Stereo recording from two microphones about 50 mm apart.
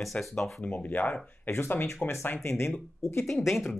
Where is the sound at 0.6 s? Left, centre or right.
Left.